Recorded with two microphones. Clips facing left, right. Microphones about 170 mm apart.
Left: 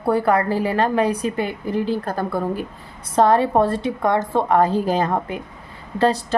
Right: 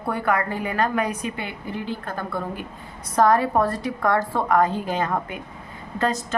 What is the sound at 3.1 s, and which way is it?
A woman's voice, 25° left (ahead or behind).